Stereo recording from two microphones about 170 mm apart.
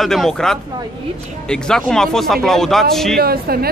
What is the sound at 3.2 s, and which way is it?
Speech, 65° right (ahead or behind).